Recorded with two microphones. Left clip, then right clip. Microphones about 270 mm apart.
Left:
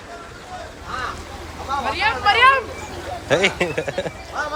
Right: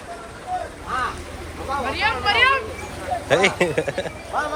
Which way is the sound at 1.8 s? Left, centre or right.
Left.